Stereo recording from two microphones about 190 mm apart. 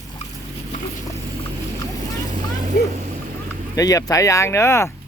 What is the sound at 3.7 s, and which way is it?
Speech, 20° left (ahead or behind).